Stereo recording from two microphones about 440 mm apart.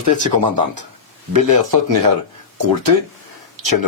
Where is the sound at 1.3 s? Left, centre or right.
Right.